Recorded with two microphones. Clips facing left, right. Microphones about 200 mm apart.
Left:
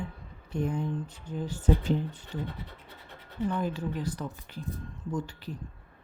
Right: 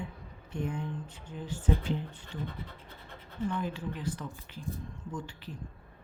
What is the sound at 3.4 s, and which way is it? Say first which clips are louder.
Speech: left 3 dB; 40° left (ahead or behind).